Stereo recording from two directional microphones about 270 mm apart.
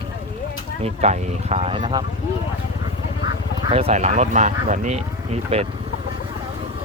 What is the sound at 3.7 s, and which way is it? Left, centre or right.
Speech, right.